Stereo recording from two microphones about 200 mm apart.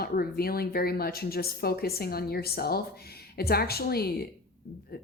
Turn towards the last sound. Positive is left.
turn(degrees=50)  # may be behind; listen again after turning